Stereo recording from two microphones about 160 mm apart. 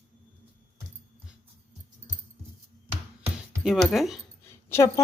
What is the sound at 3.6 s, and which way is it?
Speech, centre (ahead or behind).